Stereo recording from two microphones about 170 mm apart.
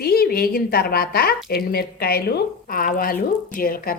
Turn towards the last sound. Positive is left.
turn(degrees=60)  # may be behind; listen again after turning